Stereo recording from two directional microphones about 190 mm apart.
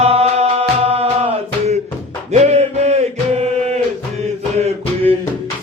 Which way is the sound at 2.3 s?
35° right (ahead or behind).